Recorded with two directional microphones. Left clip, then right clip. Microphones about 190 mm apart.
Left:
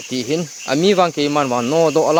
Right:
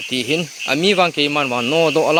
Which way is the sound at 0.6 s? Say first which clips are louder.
Left 1 dB; 5° left (ahead or behind).